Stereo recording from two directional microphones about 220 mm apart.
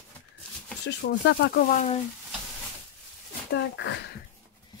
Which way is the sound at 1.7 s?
30° left (ahead or behind).